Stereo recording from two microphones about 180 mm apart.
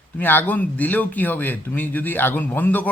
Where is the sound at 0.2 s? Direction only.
10° left (ahead or behind).